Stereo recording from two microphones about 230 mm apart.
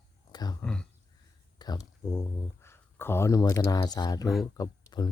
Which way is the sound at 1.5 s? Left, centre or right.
Centre.